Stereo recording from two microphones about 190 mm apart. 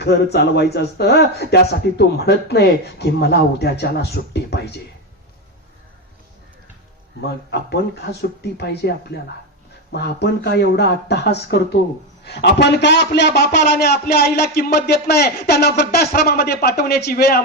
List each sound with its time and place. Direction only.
0.0 s a man's voice: 60° left (ahead or behind)
7.3 s a man's voice: 60° left (ahead or behind)